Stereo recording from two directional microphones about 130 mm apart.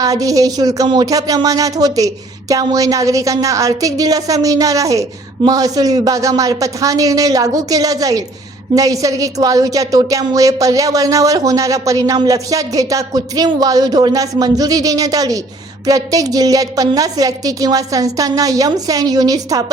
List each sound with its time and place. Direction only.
0.0 s a woman's voice: 25° right (ahead or behind)